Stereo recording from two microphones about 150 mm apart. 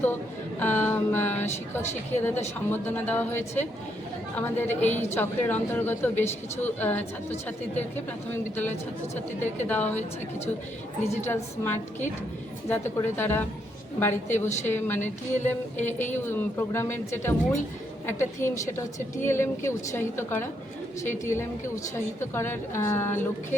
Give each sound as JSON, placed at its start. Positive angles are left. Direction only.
{"t": 0.6, "sound": "a woman's voice", "side_deg": 10}
{"t": 1.8, "sound": "a woman's voice", "side_deg": 50}
{"t": 2.6, "sound": "a woman's voice", "side_deg": 15}
{"t": 9.6, "sound": "a woman's voice", "side_deg": 10}
{"t": 11.3, "sound": "a woman's voice", "side_deg": 15}